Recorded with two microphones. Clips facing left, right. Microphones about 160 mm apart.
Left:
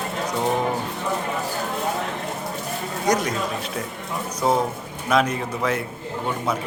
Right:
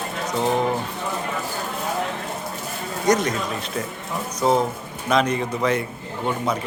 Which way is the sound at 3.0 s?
10° left (ahead or behind).